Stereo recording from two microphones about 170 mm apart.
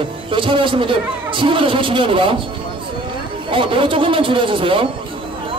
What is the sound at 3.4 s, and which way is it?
A man's voice, 30° right (ahead or behind).